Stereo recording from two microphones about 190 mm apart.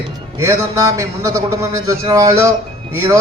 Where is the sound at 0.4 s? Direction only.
15° right (ahead or behind).